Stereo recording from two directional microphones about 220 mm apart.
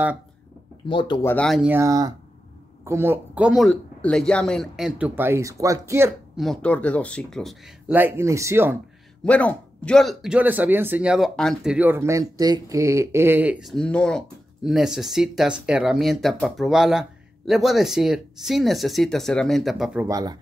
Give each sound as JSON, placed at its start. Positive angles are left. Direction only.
{"t": 0.8, "sound": "speech", "side_deg": 20}
{"t": 1.2, "sound": "speech", "side_deg": 5}
{"t": 6.3, "sound": "speech", "side_deg": 0}
{"t": 7.9, "sound": "speech", "side_deg": -10}
{"t": 9.2, "sound": "speech", "side_deg": 5}